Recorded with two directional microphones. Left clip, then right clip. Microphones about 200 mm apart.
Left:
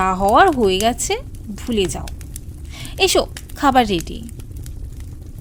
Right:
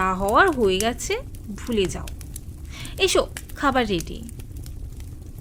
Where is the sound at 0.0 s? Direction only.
50° left (ahead or behind).